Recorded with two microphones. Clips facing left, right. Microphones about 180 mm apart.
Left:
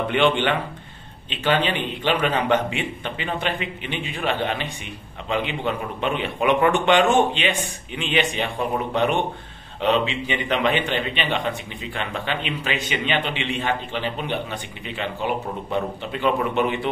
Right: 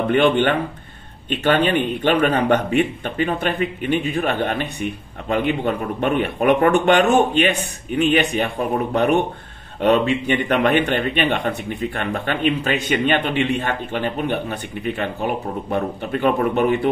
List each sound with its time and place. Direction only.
0.1 s a man's voice: 45° right (ahead or behind)